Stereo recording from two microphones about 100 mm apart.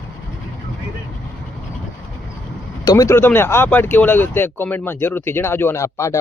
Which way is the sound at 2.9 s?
35° left (ahead or behind).